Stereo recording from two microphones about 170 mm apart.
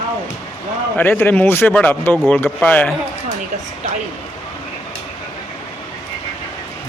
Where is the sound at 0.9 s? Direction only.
10° left (ahead or behind).